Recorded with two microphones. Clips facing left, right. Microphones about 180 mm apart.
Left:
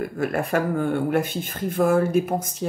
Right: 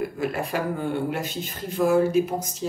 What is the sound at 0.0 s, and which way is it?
Speech, 50° left (ahead or behind).